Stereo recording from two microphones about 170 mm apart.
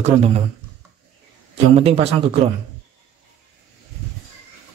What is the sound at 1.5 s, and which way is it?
Speech, 35° right (ahead or behind).